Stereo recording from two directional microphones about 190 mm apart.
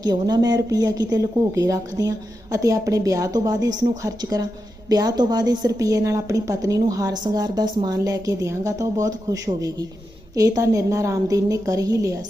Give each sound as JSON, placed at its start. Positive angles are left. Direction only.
{"t": 0.0, "sound": "a woman's voice", "side_deg": -20}